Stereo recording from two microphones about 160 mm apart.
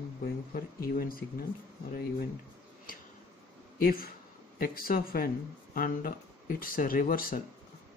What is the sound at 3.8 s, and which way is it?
Speech, 65° left (ahead or behind).